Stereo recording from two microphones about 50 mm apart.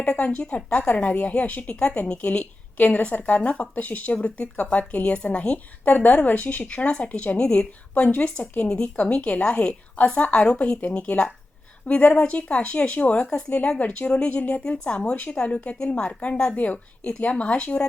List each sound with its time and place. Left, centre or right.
0.2 s speech: left